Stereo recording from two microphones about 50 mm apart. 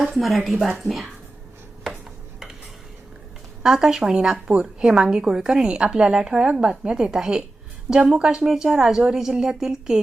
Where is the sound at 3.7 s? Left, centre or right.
Centre.